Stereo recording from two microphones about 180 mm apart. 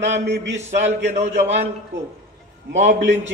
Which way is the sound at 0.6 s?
40° right (ahead or behind).